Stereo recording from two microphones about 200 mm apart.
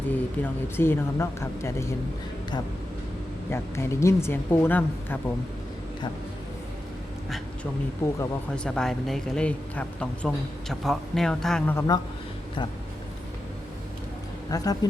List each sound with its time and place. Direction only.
0.1 s speech: 10° left (ahead or behind)
3.5 s speech: 15° left (ahead or behind)
7.3 s a sound: centre (ahead or behind)
8.5 s speech: 5° left (ahead or behind)
14.5 s speech: 20° left (ahead or behind)